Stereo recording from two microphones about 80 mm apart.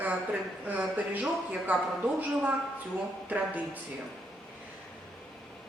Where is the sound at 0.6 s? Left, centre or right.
Centre.